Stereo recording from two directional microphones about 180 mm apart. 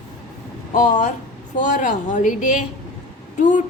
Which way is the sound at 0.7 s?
45° left (ahead or behind).